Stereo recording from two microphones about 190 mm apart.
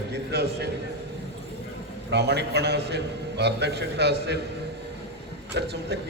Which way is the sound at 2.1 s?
60° right (ahead or behind).